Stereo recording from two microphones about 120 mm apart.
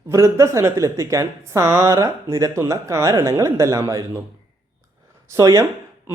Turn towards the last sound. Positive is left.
turn(degrees=-30)  # may be behind; listen again after turning